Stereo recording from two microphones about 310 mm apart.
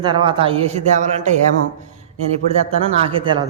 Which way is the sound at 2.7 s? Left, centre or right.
Centre.